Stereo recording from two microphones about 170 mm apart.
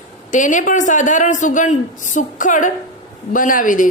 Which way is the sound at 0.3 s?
50° left (ahead or behind).